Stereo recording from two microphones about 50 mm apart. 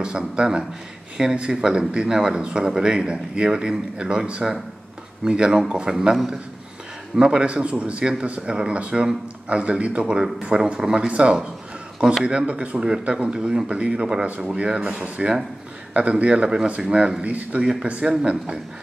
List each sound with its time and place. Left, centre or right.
0.0 s a man's voice: centre
7.2 s speech: centre
17.6 s a man's voice: centre